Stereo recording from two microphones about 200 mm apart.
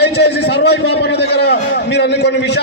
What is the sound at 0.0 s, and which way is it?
A man's voice, 55° left (ahead or behind).